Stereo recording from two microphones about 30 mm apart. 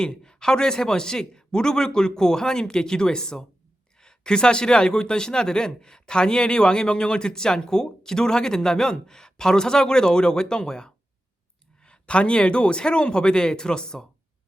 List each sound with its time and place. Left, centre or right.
0.3 s speech: left
11.8 s speech: left